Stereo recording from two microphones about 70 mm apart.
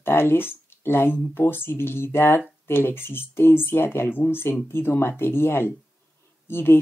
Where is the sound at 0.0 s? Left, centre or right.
Left.